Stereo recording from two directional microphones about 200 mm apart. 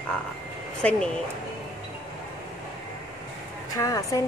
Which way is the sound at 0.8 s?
5° left (ahead or behind).